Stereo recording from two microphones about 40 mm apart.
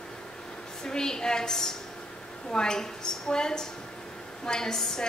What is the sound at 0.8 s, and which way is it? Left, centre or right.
A woman's voice, centre.